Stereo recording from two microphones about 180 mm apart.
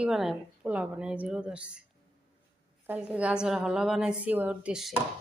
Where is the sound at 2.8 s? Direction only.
10° right (ahead or behind).